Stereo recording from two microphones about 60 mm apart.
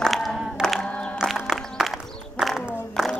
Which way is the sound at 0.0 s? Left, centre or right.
Centre.